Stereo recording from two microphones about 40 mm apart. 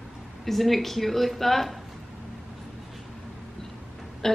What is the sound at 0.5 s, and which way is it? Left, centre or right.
A woman's voice, centre.